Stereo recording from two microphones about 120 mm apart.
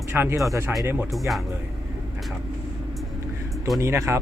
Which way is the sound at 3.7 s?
25° right (ahead or behind).